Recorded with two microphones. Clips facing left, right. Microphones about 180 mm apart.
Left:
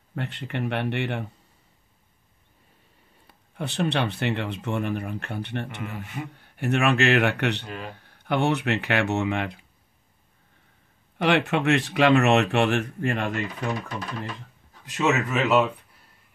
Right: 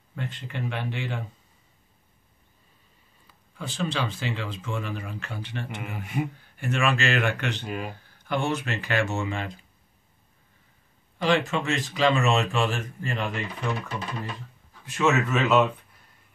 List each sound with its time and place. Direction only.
0.1 s speech: 65° left (ahead or behind)
3.3 s speech: 65° left (ahead or behind)
5.8 s speech: 10° right (ahead or behind)
6.3 s speech: 65° left (ahead or behind)
7.6 s speech: 10° right (ahead or behind)
8.0 s speech: 60° left (ahead or behind)
11.1 s speech: 65° left (ahead or behind)
14.7 s speech: 15° left (ahead or behind)